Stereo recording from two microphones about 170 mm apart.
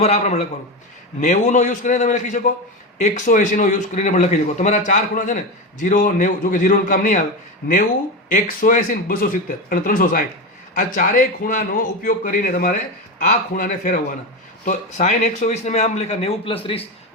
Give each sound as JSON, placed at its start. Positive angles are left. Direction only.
{"t": 0.0, "sound": "a man's voice", "side_deg": 40}
{"t": 8.3, "sound": "a man's voice", "side_deg": 55}